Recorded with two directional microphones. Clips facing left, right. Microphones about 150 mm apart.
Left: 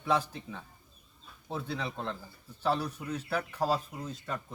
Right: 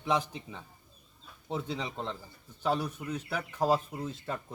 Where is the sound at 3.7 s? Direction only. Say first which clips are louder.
Right 3 dB; 25° right (ahead or behind).